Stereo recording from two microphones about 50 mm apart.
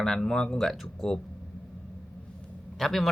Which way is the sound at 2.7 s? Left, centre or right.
Centre.